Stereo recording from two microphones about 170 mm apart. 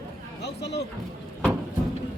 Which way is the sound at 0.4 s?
80° left.